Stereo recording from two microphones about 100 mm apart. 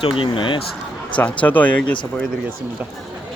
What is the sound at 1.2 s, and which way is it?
Speech, 15° left (ahead or behind).